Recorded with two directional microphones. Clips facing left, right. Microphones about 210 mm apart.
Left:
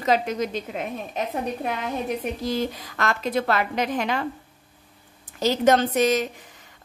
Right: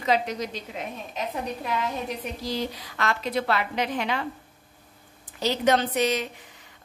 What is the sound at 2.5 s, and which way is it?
A woman's voice, 50° left (ahead or behind).